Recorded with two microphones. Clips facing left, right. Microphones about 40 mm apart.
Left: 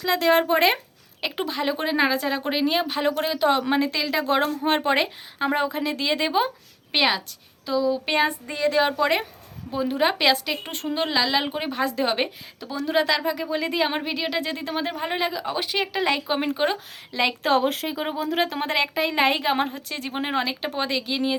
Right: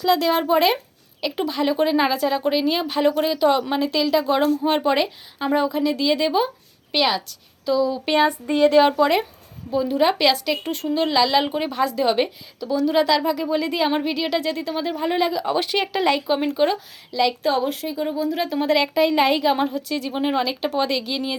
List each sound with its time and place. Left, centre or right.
0.1 s speech: left
3.3 s a woman's voice: left
3.9 s a woman's voice: left
7.6 s speech: centre
8.7 s speech: centre
9.7 s speech: left
10.7 s a woman's voice: left
10.9 s speech: centre; by 14.9 s left
14.9 s speech: centre
15.4 s speech: centre
16.2 s speech: left
17.1 s speech: left
17.4 s a woman's voice: left
19.5 s speech: left